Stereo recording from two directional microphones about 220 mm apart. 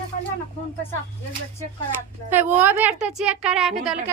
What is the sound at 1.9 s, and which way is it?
A woman's voice, 10° right (ahead or behind).